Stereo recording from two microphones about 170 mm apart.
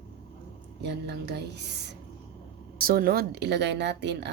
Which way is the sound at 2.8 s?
60° right (ahead or behind).